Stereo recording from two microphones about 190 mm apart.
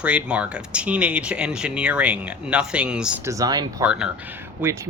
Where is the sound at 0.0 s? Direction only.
5° right (ahead or behind).